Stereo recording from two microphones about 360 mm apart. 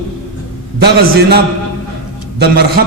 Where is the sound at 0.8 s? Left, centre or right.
Right.